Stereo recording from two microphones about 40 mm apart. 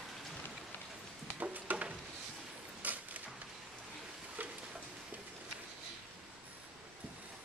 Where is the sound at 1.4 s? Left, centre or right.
Right.